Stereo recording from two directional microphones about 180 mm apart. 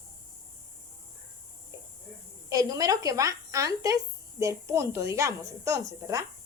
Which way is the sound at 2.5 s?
20° right (ahead or behind).